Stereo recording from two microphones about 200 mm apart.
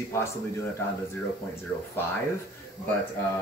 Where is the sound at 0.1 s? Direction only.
10° left (ahead or behind).